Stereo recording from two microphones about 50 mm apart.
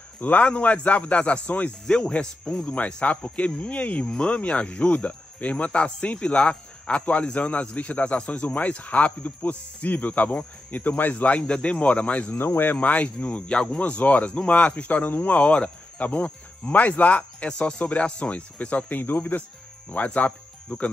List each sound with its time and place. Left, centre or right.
0.2 s a man's voice: left
1.9 s a man's voice: centre
12.3 s speech: left
12.8 s a man's voice: left
15.3 s a man's voice: left